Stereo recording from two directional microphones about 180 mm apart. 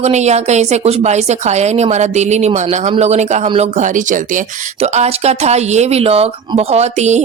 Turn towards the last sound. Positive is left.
turn(degrees=-40)  # may be behind; listen again after turning